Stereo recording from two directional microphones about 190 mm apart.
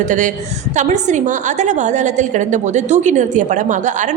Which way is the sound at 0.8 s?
40° right (ahead or behind).